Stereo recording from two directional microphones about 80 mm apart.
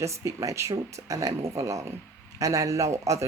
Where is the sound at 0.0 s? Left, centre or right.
Right.